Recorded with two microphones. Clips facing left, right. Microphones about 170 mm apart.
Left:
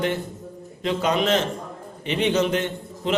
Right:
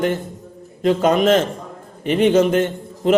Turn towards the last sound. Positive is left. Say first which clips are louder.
# right 8 dB
turn(degrees=-50)  # may be behind; listen again after turning